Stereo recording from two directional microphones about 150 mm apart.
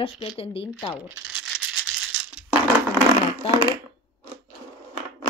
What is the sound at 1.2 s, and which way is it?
Rattle, 5° right (ahead or behind).